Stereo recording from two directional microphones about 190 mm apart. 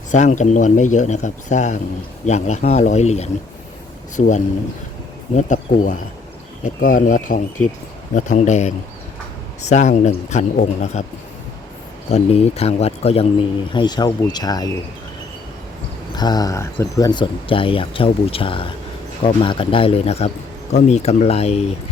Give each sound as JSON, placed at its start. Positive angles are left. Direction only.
{"t": 0.1, "sound": "speech", "side_deg": 40}
{"t": 12.1, "sound": "speech", "side_deg": 35}
{"t": 13.7, "sound": "speech", "side_deg": 20}
{"t": 16.1, "sound": "speech", "side_deg": 20}